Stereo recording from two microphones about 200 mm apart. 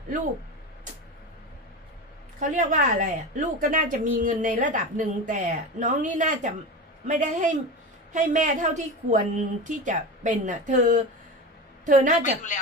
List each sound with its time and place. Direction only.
2.5 s a woman's voice: 40° right (ahead or behind)